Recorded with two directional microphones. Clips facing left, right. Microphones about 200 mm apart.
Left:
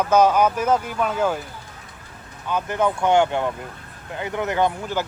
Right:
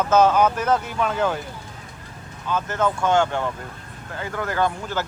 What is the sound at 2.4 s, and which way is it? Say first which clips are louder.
Speech: left 1 dB; 15° left (ahead or behind).